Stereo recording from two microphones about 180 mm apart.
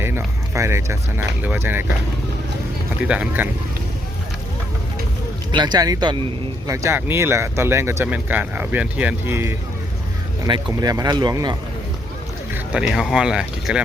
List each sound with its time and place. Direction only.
0.0 s speech: 15° right (ahead or behind)
3.0 s speech: 5° right (ahead or behind)
5.5 s speech: 25° right (ahead or behind)
12.9 s speech: 5° right (ahead or behind)